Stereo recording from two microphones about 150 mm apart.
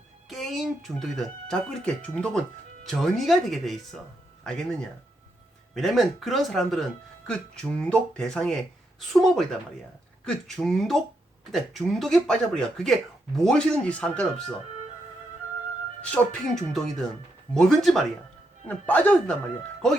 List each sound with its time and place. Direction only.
0.3 s speech: centre (ahead or behind)
5.7 s speech: centre (ahead or behind)
16.0 s speech: 10° left (ahead or behind)